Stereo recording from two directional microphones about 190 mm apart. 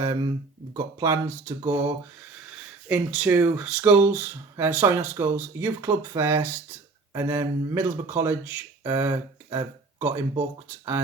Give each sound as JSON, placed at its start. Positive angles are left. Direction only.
{"t": 0.0, "sound": "speech", "side_deg": -20}
{"t": 2.9, "sound": "speech", "side_deg": -10}